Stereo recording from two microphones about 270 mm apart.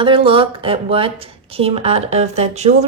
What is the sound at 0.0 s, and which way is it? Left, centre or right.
A woman's voice, centre.